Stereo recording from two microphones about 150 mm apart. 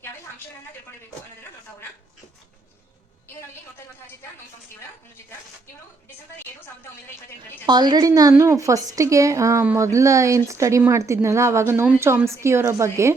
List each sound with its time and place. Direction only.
7.7 s a woman's voice: 30° right (ahead or behind)